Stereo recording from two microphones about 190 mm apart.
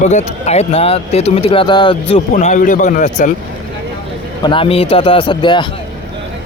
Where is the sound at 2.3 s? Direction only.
40° left (ahead or behind).